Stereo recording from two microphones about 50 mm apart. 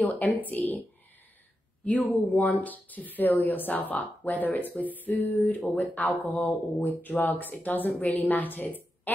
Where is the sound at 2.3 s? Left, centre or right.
Left.